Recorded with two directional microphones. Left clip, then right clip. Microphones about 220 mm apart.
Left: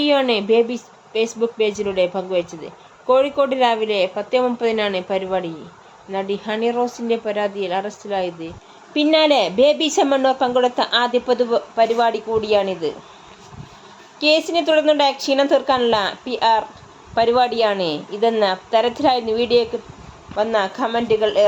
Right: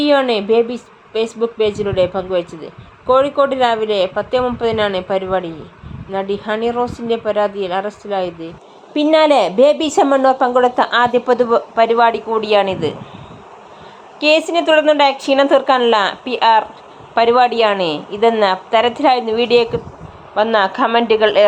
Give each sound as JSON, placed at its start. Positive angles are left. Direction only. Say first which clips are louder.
{"t": 0.0, "sound": "speech", "louder": "right 3 dB", "side_deg": -5}
{"t": 14.2, "sound": "speech", "louder": "right 3 dB", "side_deg": -10}